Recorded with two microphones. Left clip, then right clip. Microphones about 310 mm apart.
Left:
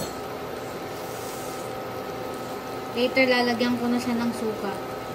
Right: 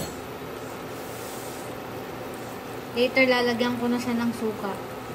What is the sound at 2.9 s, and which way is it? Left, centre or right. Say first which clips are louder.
A woman's voice: even; right.